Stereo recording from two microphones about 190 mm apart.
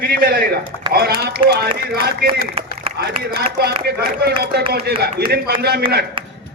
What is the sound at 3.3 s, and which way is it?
A man's voice, 55° right (ahead or behind).